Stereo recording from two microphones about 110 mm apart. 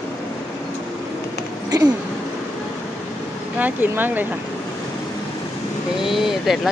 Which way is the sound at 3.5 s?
15° right (ahead or behind).